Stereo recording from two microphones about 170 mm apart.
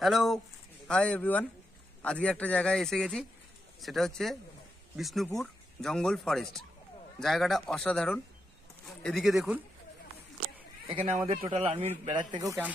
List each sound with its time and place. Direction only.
0.0 s speech: centre (ahead or behind)
10.9 s a man's voice: 35° right (ahead or behind)
12.0 s speech: 25° right (ahead or behind)